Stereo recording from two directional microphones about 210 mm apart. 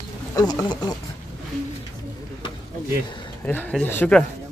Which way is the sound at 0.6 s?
20° left (ahead or behind).